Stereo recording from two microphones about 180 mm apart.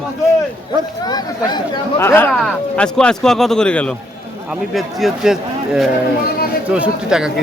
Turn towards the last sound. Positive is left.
turn(degrees=-5)  # may be behind; listen again after turning